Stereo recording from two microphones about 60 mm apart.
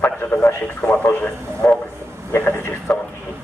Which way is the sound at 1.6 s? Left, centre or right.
Left.